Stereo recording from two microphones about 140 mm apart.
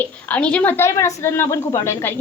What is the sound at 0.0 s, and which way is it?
A woman's voice, 10° left (ahead or behind).